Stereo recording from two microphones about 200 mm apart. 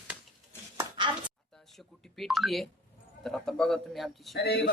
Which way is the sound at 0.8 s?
25° right (ahead or behind).